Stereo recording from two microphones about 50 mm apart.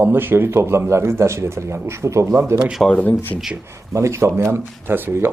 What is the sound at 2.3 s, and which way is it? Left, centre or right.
Speech, right.